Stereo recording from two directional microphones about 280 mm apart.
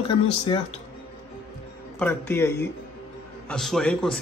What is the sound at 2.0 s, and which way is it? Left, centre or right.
A man's voice, centre.